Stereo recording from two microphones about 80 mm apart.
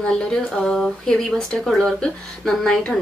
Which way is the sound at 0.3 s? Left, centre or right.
Centre.